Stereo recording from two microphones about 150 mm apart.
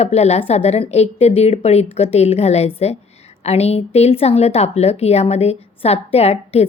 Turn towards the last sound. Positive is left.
turn(degrees=45)  # may be behind; listen again after turning